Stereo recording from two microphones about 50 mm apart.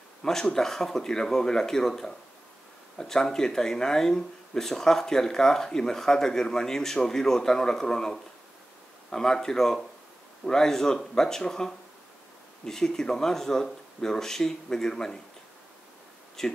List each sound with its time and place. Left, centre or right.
0.2 s speech: centre
16.4 s speech: centre